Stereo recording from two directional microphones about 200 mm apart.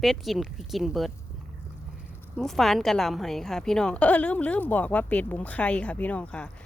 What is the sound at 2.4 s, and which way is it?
A woman's voice, centre (ahead or behind).